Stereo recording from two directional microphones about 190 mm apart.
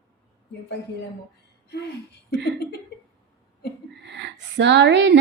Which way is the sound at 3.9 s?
65° right (ahead or behind).